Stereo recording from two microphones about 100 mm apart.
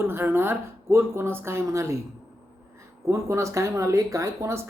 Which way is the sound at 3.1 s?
30° right (ahead or behind).